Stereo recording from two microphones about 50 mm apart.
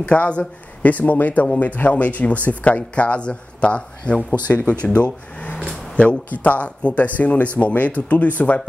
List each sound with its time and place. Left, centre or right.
0.0 s speech: left
5.9 s speech: left